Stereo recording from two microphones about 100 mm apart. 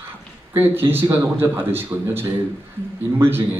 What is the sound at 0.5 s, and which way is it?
A man's voice, 20° right (ahead or behind).